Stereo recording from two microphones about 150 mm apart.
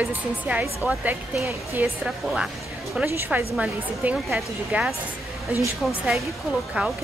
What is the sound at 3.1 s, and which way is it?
A woman's voice, 15° right (ahead or behind).